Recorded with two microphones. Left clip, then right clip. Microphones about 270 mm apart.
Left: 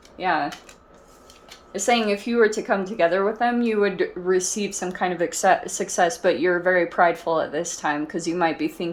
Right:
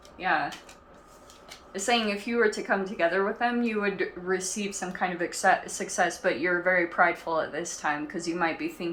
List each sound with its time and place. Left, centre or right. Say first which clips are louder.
1.7 s speech: left 6 dB; left